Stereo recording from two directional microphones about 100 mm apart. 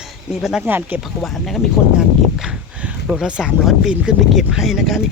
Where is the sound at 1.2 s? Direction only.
Centre (ahead or behind).